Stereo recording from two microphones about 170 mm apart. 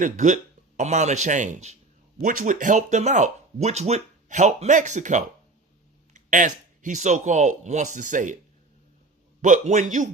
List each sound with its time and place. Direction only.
0.0 s speech: 45° right (ahead or behind)
9.4 s speech: 50° right (ahead or behind)